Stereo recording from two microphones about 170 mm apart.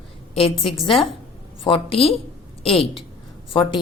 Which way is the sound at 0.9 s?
30° left (ahead or behind).